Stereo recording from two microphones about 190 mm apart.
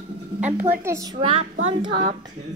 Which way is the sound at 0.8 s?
15° right (ahead or behind).